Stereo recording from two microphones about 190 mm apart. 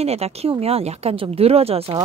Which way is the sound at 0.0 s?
35° right (ahead or behind).